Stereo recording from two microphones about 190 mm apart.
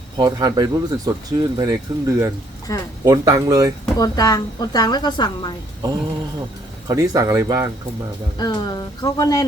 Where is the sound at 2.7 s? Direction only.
20° left (ahead or behind).